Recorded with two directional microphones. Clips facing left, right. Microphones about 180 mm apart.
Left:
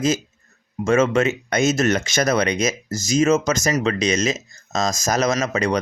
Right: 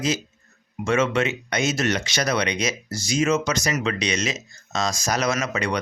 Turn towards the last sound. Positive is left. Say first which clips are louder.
# left 4 dB
turn(degrees=40)  # may be behind; listen again after turning